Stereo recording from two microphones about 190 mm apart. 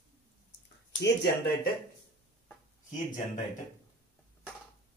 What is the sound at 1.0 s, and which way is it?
Speech, 65° left (ahead or behind).